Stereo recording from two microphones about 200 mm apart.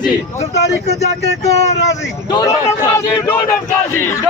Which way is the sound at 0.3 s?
35° left (ahead or behind).